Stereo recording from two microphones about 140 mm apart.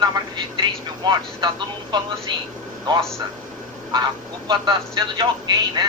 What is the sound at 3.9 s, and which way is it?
Speech, 30° right (ahead or behind).